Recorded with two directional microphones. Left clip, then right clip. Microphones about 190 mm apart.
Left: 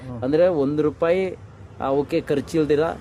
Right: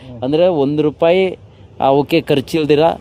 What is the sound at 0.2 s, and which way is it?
Speech, 35° right (ahead or behind).